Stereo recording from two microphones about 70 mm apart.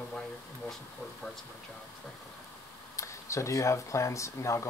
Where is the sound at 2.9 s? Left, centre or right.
Left.